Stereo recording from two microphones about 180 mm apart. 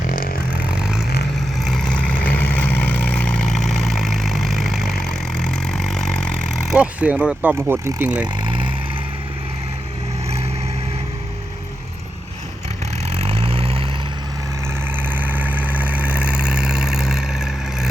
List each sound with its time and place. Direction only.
0.8 s vehicle: 5° right (ahead or behind)
13.0 s vehicle: 35° right (ahead or behind)
14.9 s vehicle: 10° right (ahead or behind)